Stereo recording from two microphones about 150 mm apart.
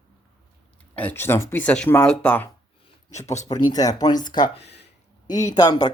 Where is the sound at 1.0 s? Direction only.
15° left (ahead or behind).